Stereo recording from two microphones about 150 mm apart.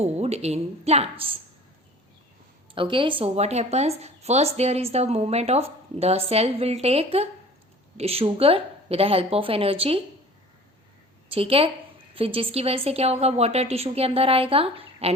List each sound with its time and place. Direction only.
0.0 s speech: 45° right (ahead or behind)
2.7 s a woman's voice: 35° right (ahead or behind)
11.3 s a woman's voice: 40° right (ahead or behind)